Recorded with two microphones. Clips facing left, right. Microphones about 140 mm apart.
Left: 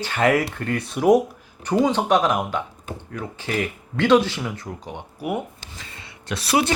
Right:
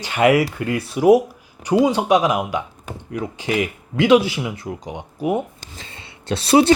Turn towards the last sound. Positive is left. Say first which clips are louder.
# right 7 dB
turn(degrees=-30)  # may be behind; listen again after turning